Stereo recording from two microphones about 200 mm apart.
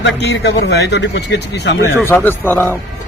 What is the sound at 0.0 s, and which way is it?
Speech, 60° left (ahead or behind).